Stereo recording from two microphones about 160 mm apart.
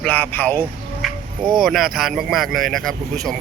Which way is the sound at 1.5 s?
Centre (ahead or behind).